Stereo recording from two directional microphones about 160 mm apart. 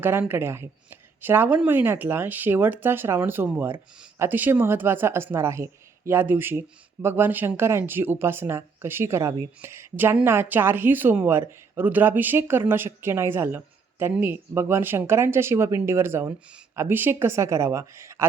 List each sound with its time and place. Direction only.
0.0 s speech: 15° right (ahead or behind)